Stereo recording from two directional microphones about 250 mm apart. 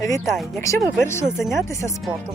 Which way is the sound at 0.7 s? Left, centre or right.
Centre.